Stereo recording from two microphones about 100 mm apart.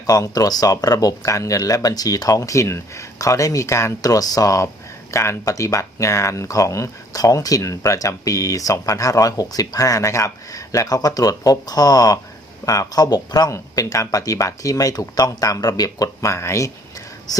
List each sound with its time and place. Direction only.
0.0 s speech: 40° left (ahead or behind)